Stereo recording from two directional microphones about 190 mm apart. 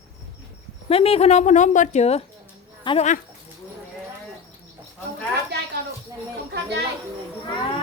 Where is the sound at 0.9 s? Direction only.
30° left (ahead or behind).